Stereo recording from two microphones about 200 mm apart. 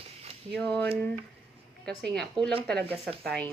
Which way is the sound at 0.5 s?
5° left (ahead or behind).